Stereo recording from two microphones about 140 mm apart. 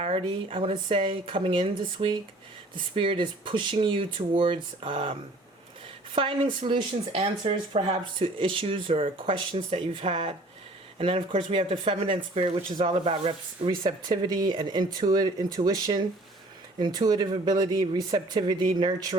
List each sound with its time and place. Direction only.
0.0 s speech: 40° right (ahead or behind)
6.1 s speech: 40° right (ahead or behind)